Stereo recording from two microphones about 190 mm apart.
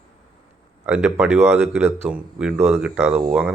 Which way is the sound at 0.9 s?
5° right (ahead or behind).